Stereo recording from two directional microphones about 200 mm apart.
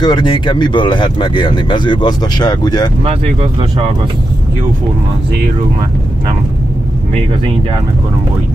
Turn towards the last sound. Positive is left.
turn(degrees=-25)  # may be behind; listen again after turning